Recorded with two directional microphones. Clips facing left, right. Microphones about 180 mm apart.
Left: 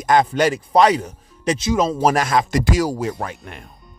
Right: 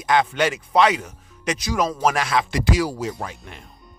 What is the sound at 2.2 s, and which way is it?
Speech, 45° left (ahead or behind).